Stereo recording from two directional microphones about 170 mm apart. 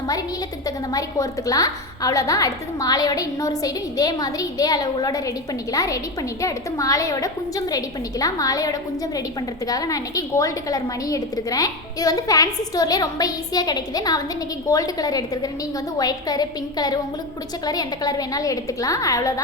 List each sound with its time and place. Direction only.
0.1 s a woman's voice: 20° left (ahead or behind)